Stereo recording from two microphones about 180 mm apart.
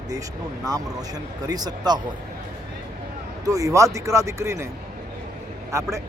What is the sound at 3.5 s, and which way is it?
Speech, 15° right (ahead or behind).